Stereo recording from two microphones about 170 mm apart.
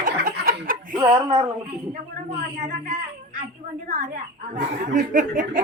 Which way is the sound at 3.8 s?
60° right (ahead or behind).